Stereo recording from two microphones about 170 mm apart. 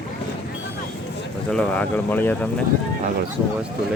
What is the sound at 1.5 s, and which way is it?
Speech, 5° left (ahead or behind).